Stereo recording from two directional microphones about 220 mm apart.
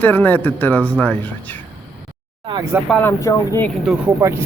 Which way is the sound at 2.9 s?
10° left (ahead or behind).